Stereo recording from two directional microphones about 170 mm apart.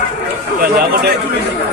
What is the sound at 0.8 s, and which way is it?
Speech, 65° right (ahead or behind).